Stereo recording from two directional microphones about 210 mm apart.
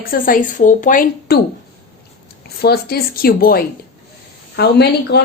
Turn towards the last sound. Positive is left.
turn(degrees=50)  # may be behind; listen again after turning